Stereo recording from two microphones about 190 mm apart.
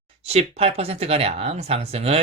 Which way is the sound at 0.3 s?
30° right (ahead or behind).